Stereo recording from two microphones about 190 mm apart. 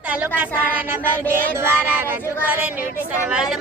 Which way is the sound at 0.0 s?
10° right (ahead or behind).